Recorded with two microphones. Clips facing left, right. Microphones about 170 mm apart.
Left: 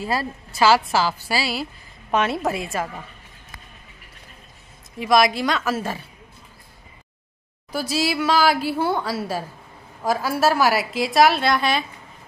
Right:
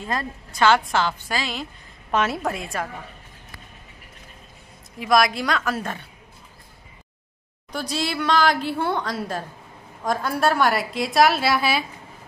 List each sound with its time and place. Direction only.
0.0 s a woman's voice: 5° left (ahead or behind)
4.9 s a woman's voice: centre (ahead or behind)
7.7 s a woman's voice: 5° left (ahead or behind)